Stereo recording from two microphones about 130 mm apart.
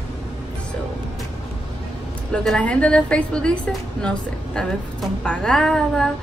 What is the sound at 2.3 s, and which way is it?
A woman's voice, 5° left (ahead or behind).